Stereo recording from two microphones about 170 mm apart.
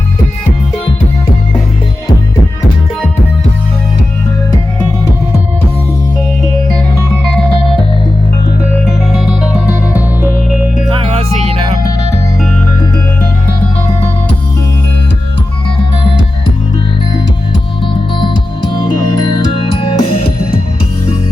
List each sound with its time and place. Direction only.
10.8 s music: 35° right (ahead or behind)
19.8 s music: 30° left (ahead or behind)